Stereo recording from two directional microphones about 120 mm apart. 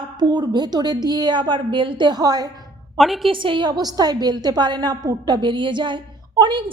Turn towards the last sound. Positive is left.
turn(degrees=-40)  # may be behind; listen again after turning